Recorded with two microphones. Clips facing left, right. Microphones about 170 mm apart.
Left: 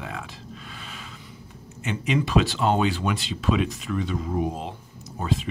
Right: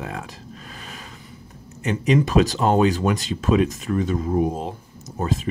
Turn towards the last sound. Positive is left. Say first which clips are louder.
# right 2 dB
turn(degrees=-45)  # may be behind; listen again after turning